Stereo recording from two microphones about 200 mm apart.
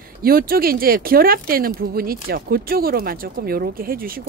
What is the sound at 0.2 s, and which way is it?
Speech, 50° right (ahead or behind).